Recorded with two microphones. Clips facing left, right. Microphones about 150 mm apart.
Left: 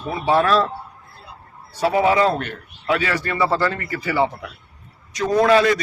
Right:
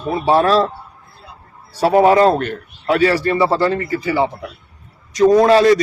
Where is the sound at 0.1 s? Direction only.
35° right (ahead or behind).